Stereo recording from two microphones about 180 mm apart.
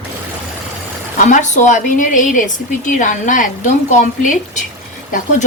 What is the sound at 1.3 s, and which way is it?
A woman's voice, 45° left (ahead or behind).